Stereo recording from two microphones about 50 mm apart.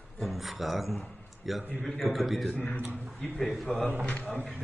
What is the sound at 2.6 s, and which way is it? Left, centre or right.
Speech, left.